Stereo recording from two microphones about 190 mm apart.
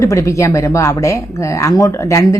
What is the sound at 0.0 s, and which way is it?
Speech, 15° left (ahead or behind).